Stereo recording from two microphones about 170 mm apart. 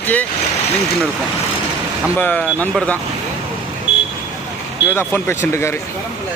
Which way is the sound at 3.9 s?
90° left.